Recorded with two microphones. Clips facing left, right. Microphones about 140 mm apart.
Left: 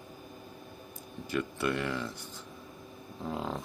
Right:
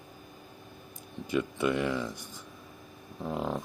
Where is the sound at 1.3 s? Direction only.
15° right (ahead or behind).